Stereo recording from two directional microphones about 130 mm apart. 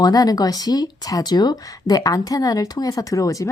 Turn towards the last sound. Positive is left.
turn(degrees=25)  # may be behind; listen again after turning